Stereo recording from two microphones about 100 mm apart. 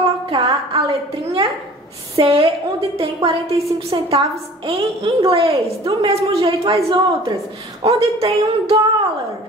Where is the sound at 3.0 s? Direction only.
75° right (ahead or behind).